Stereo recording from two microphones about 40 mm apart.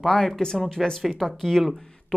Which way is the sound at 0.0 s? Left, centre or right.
Centre.